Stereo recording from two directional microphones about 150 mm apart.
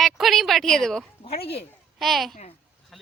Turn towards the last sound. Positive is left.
turn(degrees=0)  # may be behind; listen again after turning